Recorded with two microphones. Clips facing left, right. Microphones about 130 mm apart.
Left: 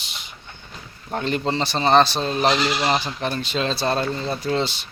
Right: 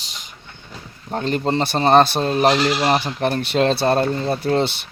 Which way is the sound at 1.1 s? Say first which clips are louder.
Right 3 dB; 40° right (ahead or behind).